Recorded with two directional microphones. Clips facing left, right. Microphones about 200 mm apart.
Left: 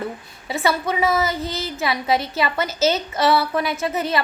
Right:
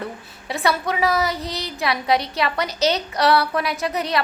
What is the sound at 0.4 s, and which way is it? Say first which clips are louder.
A woman's voice: left 1 dB; centre (ahead or behind).